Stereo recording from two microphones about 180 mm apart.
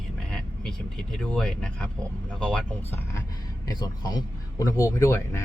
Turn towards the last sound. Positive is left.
turn(degrees=15)  # may be behind; listen again after turning